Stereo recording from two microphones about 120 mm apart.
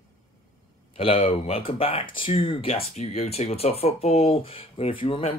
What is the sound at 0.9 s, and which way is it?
Speech, 55° left (ahead or behind).